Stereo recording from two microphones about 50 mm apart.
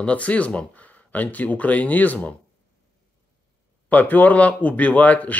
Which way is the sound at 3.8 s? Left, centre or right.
Left.